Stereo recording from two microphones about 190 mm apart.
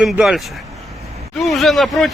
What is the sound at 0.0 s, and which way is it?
Speech, centre (ahead or behind).